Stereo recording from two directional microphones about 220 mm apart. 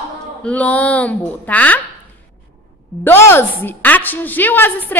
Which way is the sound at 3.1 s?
10° left (ahead or behind).